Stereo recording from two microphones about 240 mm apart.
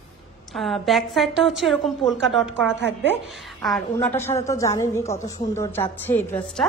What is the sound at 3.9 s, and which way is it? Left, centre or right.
A woman's voice, centre.